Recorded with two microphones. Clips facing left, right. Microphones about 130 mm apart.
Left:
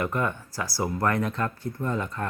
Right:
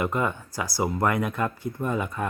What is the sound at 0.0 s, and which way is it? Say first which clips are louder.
Speech: right 1 dB; 15° right (ahead or behind).